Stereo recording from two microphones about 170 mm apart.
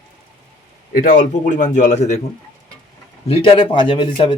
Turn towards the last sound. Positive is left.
turn(degrees=30)  # may be behind; listen again after turning